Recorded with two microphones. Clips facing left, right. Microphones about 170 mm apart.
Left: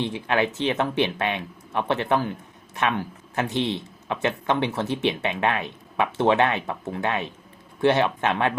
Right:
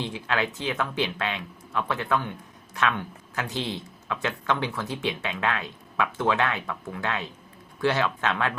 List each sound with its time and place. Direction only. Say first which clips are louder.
0.0 s speech: left 5 dB; 20° left (ahead or behind)